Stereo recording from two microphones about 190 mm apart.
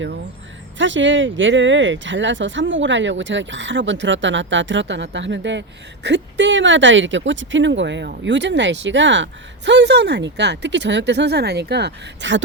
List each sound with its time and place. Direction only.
0.8 s speech: 80° right